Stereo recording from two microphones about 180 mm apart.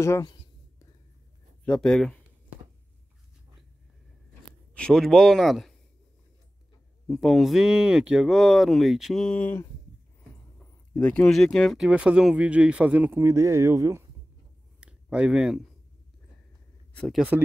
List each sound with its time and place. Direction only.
0.0 s a sound: 20° left (ahead or behind)
1.7 s speech: 5° left (ahead or behind)
4.7 s speech: 5° left (ahead or behind)
7.1 s speech: centre (ahead or behind)
11.0 s speech: 5° left (ahead or behind); by 14.0 s 15° right (ahead or behind)
14.8 s a sound: 5° right (ahead or behind)
16.9 s speech: 5° left (ahead or behind)